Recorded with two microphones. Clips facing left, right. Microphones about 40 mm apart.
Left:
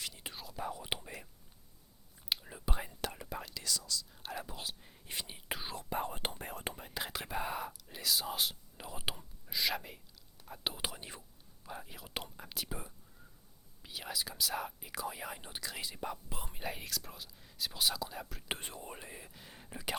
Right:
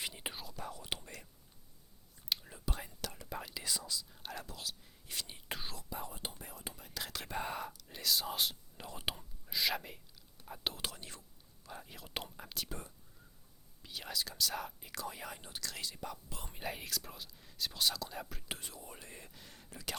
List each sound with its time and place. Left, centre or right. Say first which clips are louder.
0.0 s whispering: right 2 dB; right
0.5 s whispering: left 4 dB; centre
2.3 s whispering: left 2 dB; centre
3.2 s whispering: left 1 dB; centre
3.5 s whispering: left 1 dB; centre
4.1 s whispering: left 3 dB; centre
4.4 s whispering: left 2 dB; left
5.9 s whispering: left 9 dB; left
6.7 s whispering: left 3 dB; left; by 7.7 s centre
7.7 s speech: even; centre
18.4 s speech: left 4 dB; left
18.9 s whispering: left 4 dB; left
19.1 s whispering: left 2 dB; centre